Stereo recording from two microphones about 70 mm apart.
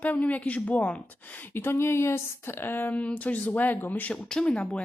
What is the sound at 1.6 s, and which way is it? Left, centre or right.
Speech, left.